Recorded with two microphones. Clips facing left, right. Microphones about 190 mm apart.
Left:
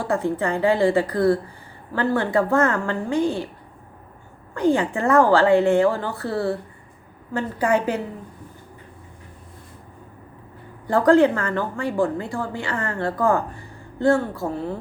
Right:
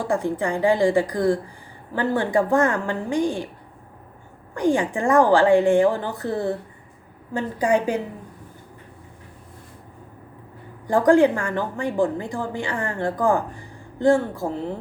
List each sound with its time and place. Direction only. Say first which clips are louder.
0.0 s a woman's voice: even; 15° right (ahead or behind)
4.5 s a woman's voice: left 1 dB; 15° right (ahead or behind)
10.8 s a woman's voice: even; 15° right (ahead or behind)